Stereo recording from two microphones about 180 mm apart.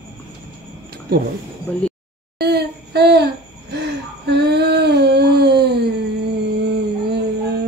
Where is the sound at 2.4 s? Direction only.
65° right (ahead or behind).